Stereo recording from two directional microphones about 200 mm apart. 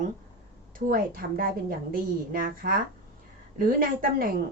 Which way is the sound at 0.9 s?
45° right (ahead or behind).